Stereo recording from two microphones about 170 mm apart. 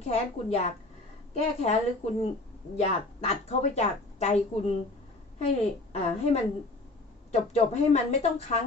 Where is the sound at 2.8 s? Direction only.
40° left (ahead or behind).